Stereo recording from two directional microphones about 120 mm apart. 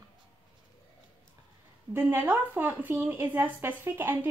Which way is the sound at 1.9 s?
15° right (ahead or behind).